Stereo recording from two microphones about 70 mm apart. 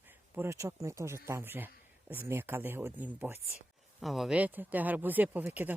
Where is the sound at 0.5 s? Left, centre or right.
Right.